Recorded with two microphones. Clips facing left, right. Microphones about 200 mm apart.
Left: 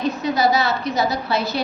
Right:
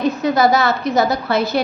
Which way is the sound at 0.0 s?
50° right (ahead or behind).